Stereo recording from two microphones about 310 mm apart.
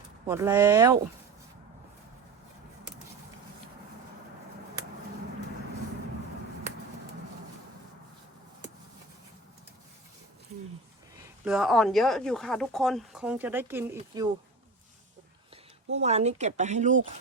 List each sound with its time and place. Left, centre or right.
0.3 s speech: centre
11.2 s speech: centre
15.9 s speech: right